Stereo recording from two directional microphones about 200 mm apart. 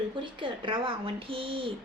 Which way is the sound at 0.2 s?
25° right (ahead or behind).